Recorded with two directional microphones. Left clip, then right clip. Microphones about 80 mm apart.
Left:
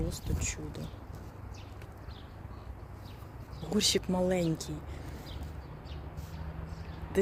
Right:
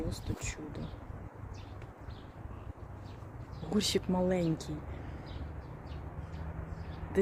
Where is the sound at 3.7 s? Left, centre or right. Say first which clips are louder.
Left 3 dB; centre.